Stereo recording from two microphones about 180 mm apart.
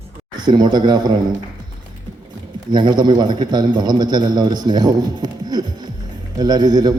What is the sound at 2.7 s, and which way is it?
A man's voice, 25° right (ahead or behind).